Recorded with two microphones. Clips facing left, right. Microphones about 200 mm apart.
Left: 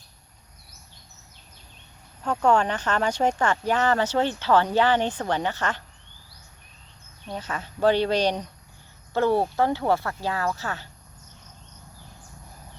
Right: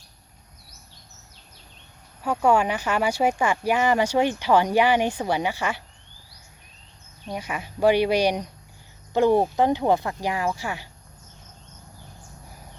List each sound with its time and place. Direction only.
2.2 s speech: 10° right (ahead or behind)
7.3 s speech: 10° right (ahead or behind)